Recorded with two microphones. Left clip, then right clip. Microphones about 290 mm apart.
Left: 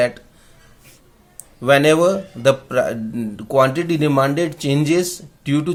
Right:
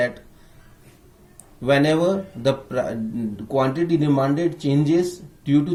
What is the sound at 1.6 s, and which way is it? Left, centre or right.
Speech, centre.